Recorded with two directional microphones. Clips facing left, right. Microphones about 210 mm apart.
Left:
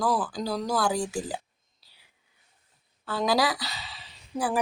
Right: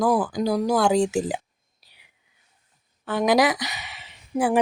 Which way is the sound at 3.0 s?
20° right (ahead or behind).